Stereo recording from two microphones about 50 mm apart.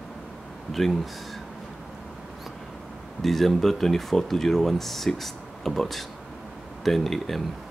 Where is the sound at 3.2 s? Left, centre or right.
Centre.